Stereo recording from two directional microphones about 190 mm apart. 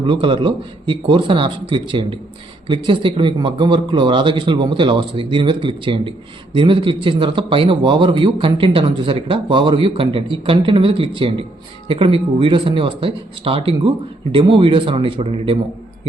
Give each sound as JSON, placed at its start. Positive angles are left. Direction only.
{"t": 0.0, "sound": "speech", "side_deg": -25}